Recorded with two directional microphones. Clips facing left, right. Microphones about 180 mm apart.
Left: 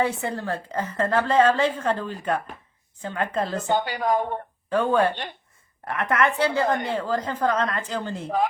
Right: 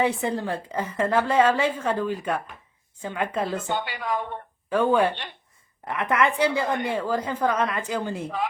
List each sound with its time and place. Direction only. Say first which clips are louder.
0.0 s a woman's voice: right 1 dB; 15° right (ahead or behind)
3.6 s speech: left 5 dB; 45° left (ahead or behind)
4.7 s a woman's voice: even; 10° right (ahead or behind)